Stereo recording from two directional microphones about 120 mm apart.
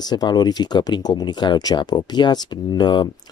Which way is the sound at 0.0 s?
35° left (ahead or behind).